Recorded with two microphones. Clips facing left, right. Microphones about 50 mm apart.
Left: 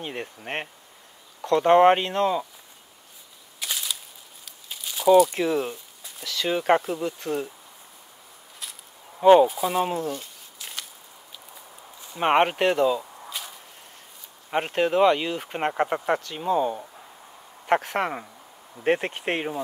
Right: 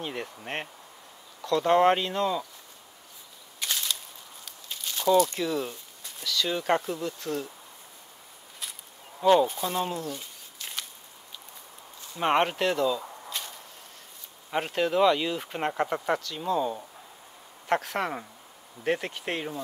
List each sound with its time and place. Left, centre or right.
0.0 s speech: centre
1.4 s speech: left
3.5 s a sound: centre
6.2 s speech: centre
9.2 s speech: left
9.5 s speech: centre
10.1 s a sound: centre
12.1 s speech: centre
13.3 s whip: centre
14.5 s speech: centre
15.5 s speech: centre
18.9 s speech: left